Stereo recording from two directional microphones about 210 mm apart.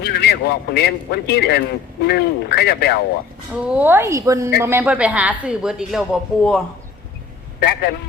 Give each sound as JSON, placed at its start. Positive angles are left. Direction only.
{"t": 0.0, "sound": "a man's voice", "side_deg": 50}
{"t": 3.6, "sound": "a woman's voice", "side_deg": -5}
{"t": 7.6, "sound": "a man's voice", "side_deg": 50}